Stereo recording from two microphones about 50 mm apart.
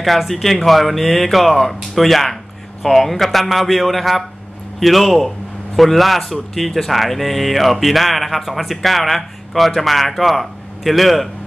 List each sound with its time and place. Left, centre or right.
0.0 s speech: centre